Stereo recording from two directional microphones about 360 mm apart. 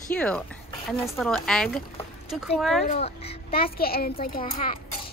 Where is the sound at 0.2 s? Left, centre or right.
Centre.